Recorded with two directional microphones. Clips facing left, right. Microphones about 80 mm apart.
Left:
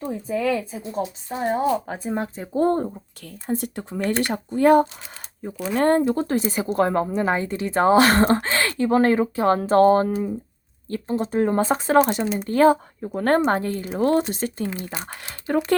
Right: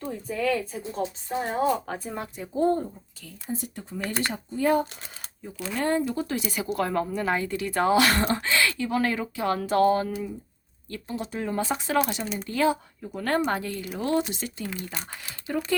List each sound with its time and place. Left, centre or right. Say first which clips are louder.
0.3 s speech: left 3 dB; centre
2.1 s speech: left 7 dB; left
2.6 s speech: left 3 dB; left
3.6 s speech: left 7 dB; left